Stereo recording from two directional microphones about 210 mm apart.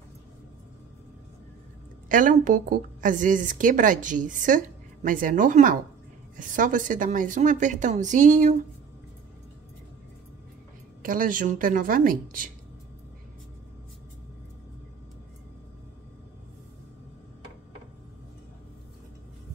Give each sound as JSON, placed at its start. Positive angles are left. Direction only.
{"t": 2.0, "sound": "a woman's voice", "side_deg": -40}
{"t": 11.0, "sound": "a woman's voice", "side_deg": -40}